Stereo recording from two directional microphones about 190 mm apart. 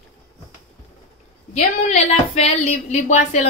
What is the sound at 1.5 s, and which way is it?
Speech, 35° left (ahead or behind).